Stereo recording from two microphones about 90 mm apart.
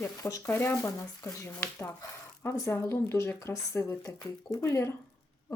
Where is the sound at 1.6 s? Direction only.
20° left (ahead or behind).